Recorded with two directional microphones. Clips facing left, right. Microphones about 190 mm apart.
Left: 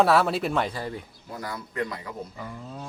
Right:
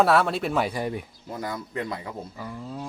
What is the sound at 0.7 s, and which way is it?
Speech, 15° right (ahead or behind).